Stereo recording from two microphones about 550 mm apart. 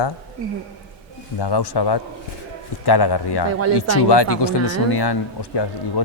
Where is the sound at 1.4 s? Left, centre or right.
Left.